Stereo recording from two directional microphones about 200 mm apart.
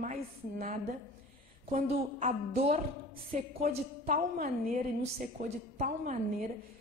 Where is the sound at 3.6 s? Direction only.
45° right (ahead or behind).